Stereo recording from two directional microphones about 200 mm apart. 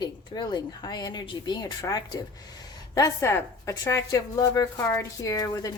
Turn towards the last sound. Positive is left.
turn(degrees=15)  # may be behind; listen again after turning